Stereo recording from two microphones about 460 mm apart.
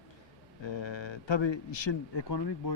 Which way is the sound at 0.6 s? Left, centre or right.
Left.